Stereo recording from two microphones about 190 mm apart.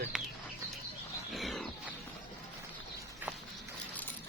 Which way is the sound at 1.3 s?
Centre (ahead or behind).